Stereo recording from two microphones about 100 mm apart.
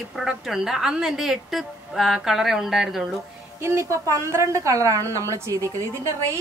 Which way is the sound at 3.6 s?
30° right (ahead or behind).